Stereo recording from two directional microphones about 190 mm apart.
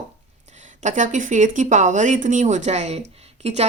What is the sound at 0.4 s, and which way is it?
Speech, 40° right (ahead or behind).